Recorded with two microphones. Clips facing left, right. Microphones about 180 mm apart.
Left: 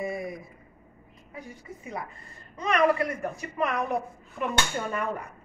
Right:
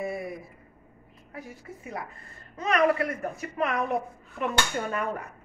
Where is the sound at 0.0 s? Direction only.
5° right (ahead or behind).